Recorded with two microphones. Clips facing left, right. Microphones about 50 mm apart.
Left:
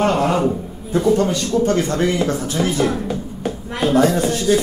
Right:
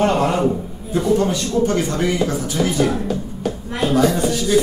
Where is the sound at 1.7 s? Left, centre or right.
Left.